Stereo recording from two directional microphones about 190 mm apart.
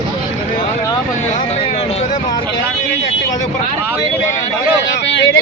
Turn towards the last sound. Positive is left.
turn(degrees=70)  # may be behind; listen again after turning